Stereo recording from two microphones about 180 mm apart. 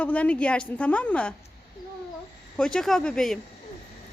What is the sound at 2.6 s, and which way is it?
Speech, 5° left (ahead or behind).